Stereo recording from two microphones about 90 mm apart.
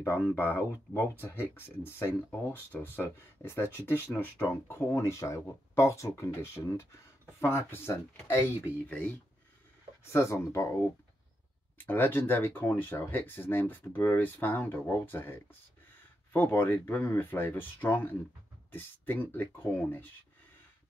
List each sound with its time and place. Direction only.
0.0 s speech: 25° left (ahead or behind)
8.8 s speech: 15° left (ahead or behind)
10.1 s speech: 30° left (ahead or behind)
11.8 s speech: 20° left (ahead or behind)